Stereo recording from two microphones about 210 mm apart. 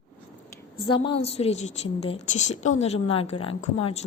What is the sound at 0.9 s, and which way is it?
A woman's voice, 25° left (ahead or behind).